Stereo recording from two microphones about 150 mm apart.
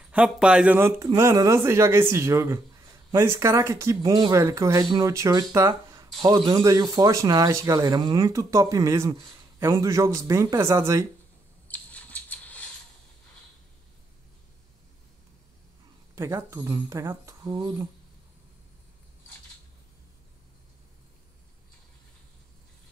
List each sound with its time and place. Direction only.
0.1 s a man's voice: 10° right (ahead or behind)
11.7 s a sound: 10° left (ahead or behind)
16.2 s a man's voice: 20° right (ahead or behind)